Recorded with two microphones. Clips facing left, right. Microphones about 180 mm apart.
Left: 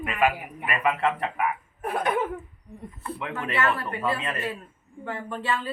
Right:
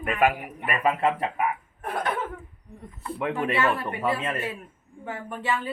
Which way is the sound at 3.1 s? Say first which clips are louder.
Right 5 dB; 15° right (ahead or behind).